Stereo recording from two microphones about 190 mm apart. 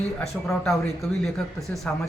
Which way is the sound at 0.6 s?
Centre (ahead or behind).